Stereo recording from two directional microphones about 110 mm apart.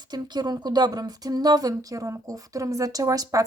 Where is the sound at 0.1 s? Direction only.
40° right (ahead or behind).